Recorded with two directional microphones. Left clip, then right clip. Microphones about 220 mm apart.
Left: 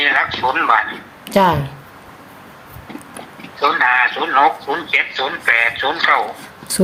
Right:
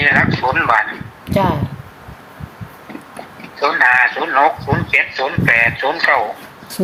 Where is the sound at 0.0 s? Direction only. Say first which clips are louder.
Right 2 dB; 15° right (ahead or behind).